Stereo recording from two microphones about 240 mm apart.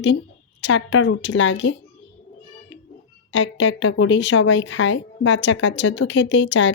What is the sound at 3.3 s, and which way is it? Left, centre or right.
A woman's voice, left.